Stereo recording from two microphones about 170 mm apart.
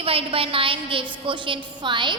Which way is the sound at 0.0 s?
35° right (ahead or behind).